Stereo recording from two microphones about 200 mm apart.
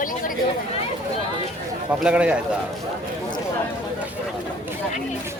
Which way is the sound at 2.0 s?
5° right (ahead or behind).